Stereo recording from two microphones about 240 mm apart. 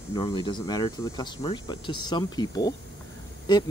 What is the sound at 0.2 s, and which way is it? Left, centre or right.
Speech, centre.